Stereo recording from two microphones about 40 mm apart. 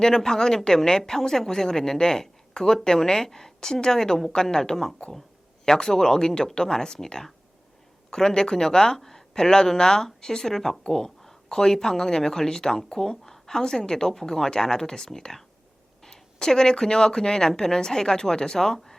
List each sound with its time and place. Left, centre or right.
0.0 s speech: centre